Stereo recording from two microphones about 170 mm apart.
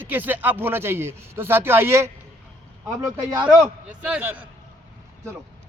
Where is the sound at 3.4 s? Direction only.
5° right (ahead or behind).